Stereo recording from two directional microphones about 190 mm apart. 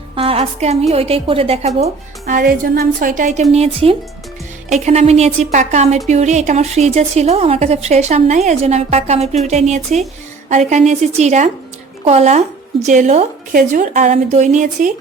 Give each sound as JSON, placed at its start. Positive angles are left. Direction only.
{"t": 0.2, "sound": "a woman's voice", "side_deg": -30}
{"t": 2.2, "sound": "a woman's voice", "side_deg": -50}